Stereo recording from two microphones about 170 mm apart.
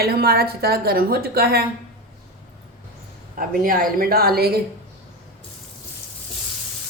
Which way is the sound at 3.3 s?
55° right (ahead or behind).